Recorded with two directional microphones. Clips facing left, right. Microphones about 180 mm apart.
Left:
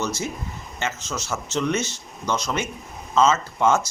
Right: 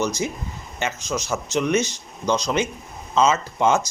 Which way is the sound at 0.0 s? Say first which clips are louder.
Right 3 dB; 15° right (ahead or behind).